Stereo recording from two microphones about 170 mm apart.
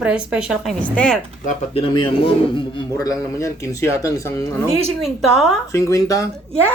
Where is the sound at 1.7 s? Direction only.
30° left (ahead or behind).